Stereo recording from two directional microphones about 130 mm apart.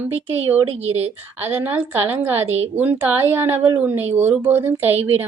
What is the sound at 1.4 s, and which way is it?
Speech, 15° right (ahead or behind).